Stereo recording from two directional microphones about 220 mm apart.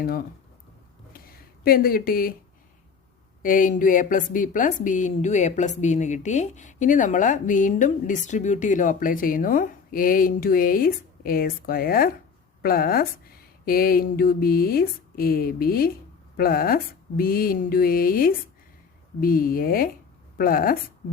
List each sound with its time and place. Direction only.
0.0 s a woman's voice: 40° left (ahead or behind)
1.1 s a sound: 40° left (ahead or behind)
3.4 s a woman's voice: 40° left (ahead or behind)